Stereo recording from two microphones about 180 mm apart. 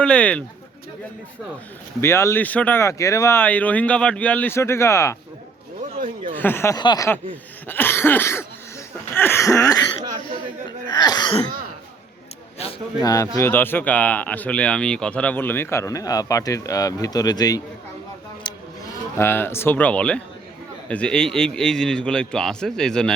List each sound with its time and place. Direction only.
0.0 s speech: 5° left (ahead or behind)
2.0 s speech: 15° left (ahead or behind)
6.3 s speech: 10° left (ahead or behind)
7.7 s cough: 10° left (ahead or behind)
9.1 s speech: 10° left (ahead or behind)
10.8 s speech: 20° left (ahead or behind)
13.0 s speech: 20° left (ahead or behind)
18.5 s a sound: 25° left (ahead or behind)
19.2 s a man's voice: 15° left (ahead or behind)